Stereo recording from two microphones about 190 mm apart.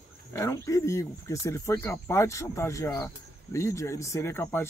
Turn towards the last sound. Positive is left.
turn(degrees=10)  # may be behind; listen again after turning